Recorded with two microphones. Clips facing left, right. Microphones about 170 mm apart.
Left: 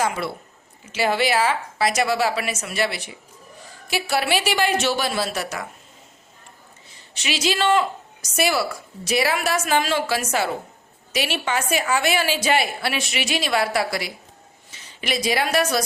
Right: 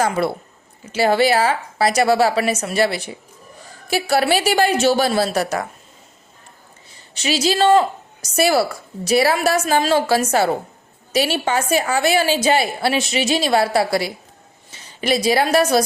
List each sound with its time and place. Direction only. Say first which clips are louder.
0.0 s a woman's voice: right 5 dB; 35° right (ahead or behind)
7.2 s a woman's voice: right 5 dB; 35° right (ahead or behind)